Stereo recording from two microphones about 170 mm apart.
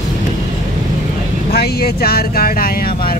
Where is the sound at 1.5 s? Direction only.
65° left (ahead or behind).